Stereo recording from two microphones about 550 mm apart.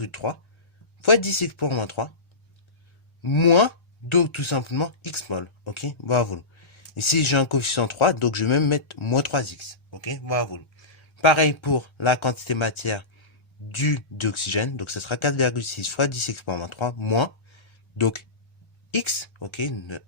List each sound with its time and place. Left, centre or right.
0.0 s speech: left
3.2 s speech: left